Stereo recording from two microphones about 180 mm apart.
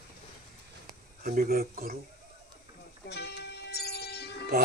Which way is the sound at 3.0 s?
65° left (ahead or behind).